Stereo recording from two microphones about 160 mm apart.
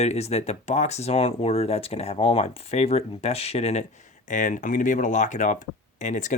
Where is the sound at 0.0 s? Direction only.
40° left (ahead or behind).